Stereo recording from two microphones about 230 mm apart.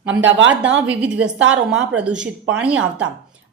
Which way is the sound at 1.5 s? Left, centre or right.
Centre.